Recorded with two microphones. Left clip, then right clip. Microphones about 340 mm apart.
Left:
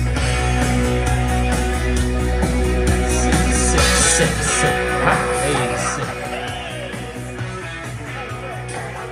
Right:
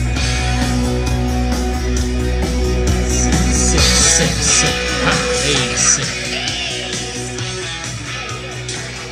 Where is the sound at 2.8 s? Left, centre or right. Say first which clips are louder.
Even; left; by 6.7 s centre.